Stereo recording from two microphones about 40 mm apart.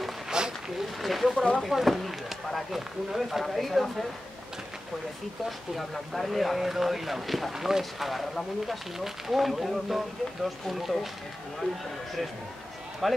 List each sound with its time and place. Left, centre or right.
0.3 s a sound: centre
1.0 s speech: centre
5.8 s speech: centre
11.6 s a man's voice: centre
13.0 s speech: centre